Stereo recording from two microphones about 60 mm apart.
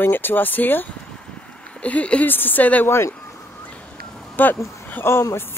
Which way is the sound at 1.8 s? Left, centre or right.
Left.